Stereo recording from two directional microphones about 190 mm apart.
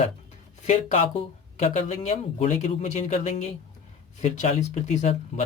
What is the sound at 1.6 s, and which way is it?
Speech, 35° left (ahead or behind).